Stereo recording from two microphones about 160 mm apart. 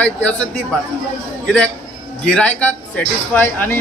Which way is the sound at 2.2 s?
5° left (ahead or behind).